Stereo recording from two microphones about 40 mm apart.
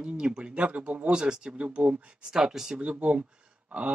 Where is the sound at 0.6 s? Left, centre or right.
Right.